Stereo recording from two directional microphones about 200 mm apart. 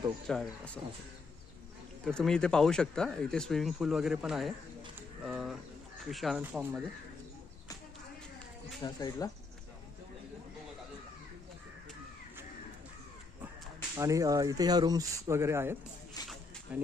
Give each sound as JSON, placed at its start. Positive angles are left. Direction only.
{"t": 0.3, "sound": "speech", "side_deg": 5}
{"t": 2.0, "sound": "speech", "side_deg": 5}
{"t": 8.8, "sound": "speech", "side_deg": 20}
{"t": 13.9, "sound": "speech", "side_deg": -15}